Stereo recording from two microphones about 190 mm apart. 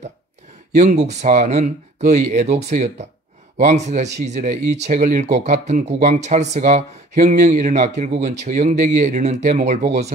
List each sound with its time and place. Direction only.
0.7 s speech: 40° right (ahead or behind)